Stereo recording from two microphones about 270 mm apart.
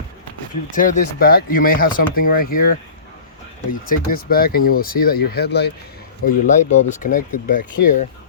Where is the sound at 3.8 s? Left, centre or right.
Left.